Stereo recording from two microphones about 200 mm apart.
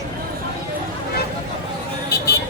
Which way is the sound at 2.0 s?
55° left (ahead or behind).